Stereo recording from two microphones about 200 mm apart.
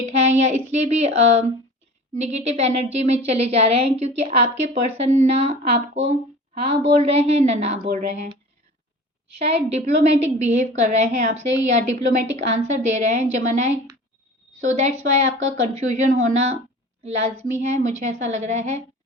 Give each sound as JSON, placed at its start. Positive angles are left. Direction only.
{"t": 0.3, "sound": "a woman's voice", "side_deg": -35}
{"t": 9.4, "sound": "a woman's voice", "side_deg": -30}